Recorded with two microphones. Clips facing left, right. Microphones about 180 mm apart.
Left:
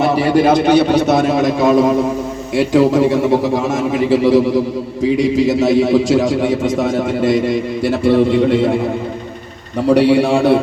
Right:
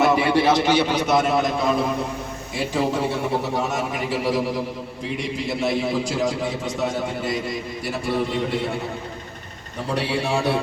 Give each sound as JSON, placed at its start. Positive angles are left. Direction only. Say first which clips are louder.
{"t": 0.0, "sound": "a man's voice", "louder": "left 5 dB", "side_deg": 35}
{"t": 9.8, "sound": "a man's voice", "louder": "left 13 dB", "side_deg": 85}